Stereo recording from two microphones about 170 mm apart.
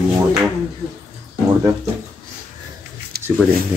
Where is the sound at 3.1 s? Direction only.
65° right (ahead or behind).